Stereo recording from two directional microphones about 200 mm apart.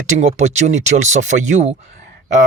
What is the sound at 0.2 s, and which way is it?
Speech, 35° right (ahead or behind).